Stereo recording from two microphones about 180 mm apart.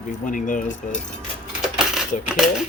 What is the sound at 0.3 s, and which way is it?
Speech, 45° left (ahead or behind).